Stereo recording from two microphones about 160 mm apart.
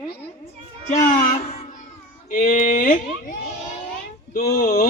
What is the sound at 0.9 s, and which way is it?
Speech, 50° left (ahead or behind).